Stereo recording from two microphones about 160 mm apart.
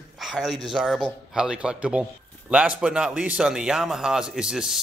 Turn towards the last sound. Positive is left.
turn(degrees=-5)  # may be behind; listen again after turning